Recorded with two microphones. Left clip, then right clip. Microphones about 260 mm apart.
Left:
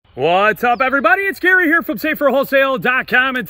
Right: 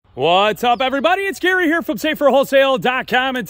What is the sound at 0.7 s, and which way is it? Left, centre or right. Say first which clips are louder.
A man's voice: left 3 dB; centre.